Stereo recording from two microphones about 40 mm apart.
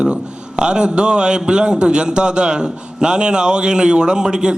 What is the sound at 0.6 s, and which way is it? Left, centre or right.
A man's voice, right.